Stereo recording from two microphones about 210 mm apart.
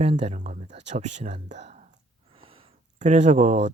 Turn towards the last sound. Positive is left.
turn(degrees=-35)  # may be behind; listen again after turning